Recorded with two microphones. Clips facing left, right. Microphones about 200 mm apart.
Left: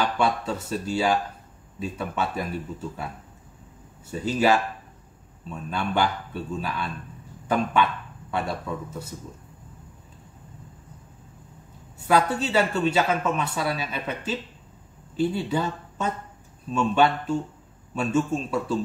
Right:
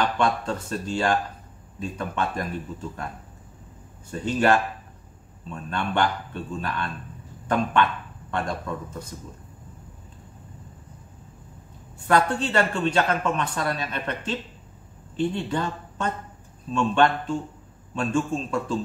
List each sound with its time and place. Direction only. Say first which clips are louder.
0.0 s speech: even; 5° left (ahead or behind)
4.1 s a man's voice: even; 5° left (ahead or behind)
12.1 s speech: even; 5° left (ahead or behind)